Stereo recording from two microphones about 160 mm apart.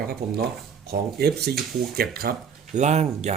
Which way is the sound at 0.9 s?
85° right.